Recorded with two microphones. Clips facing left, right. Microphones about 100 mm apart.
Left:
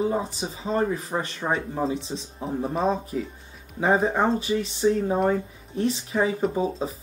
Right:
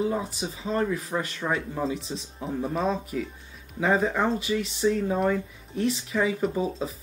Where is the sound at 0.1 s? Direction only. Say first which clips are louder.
Left 2 dB; 30° left (ahead or behind).